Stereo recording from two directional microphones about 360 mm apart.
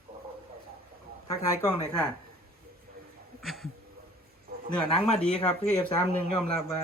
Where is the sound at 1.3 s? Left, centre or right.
Centre.